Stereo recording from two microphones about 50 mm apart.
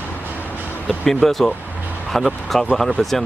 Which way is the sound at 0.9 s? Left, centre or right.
Centre.